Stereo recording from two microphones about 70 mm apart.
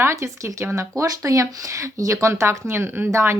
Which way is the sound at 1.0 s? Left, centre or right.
Right.